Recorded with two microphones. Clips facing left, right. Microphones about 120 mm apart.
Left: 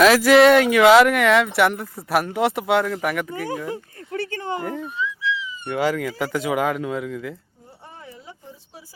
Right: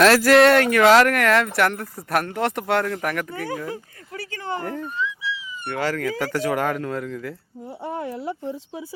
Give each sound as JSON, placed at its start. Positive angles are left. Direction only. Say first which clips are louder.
{"t": 0.0, "sound": "speech", "louder": "left 1 dB", "side_deg": 0}
{"t": 3.3, "sound": "speech", "louder": "left 1 dB", "side_deg": 15}
{"t": 4.4, "sound": "a sound", "louder": "right 4 dB", "side_deg": 15}
{"t": 4.6, "sound": "speech", "louder": "even", "side_deg": 5}
{"t": 7.9, "sound": "speech", "louder": "right 13 dB", "side_deg": -70}